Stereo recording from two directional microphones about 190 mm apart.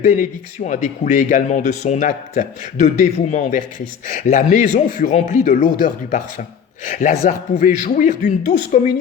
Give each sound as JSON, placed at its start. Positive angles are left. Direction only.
{"t": 0.0, "sound": "speech", "side_deg": 40}